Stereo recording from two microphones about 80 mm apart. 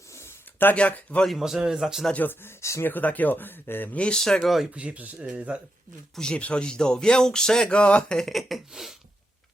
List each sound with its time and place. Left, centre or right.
0.1 s a sound: left
0.7 s speech: centre
1.2 s a man's voice: centre
2.1 s speech: left
2.8 s speech: left
3.9 s speech: centre
4.7 s speech: centre
6.1 s speech: centre